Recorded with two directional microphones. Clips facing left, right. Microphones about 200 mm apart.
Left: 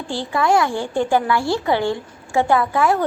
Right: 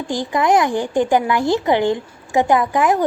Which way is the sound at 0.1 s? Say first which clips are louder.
Right 2 dB; 15° right (ahead or behind).